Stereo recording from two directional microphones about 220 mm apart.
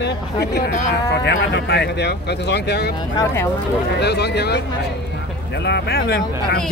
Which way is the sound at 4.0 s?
50° left (ahead or behind).